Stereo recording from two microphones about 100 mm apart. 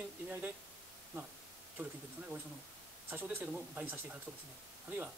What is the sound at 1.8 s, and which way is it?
Speech, 15° right (ahead or behind).